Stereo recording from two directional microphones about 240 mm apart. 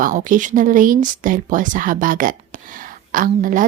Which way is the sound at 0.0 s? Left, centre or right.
Right.